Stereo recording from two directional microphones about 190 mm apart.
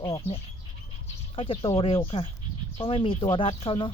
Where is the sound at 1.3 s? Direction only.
30° left (ahead or behind).